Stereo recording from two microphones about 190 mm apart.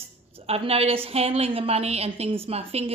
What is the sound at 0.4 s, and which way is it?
A woman's voice, 30° right (ahead or behind).